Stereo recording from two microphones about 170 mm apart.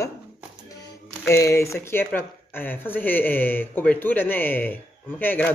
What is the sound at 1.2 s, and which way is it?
Speech, 15° left (ahead or behind).